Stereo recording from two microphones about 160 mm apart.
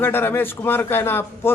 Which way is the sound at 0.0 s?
15° left (ahead or behind).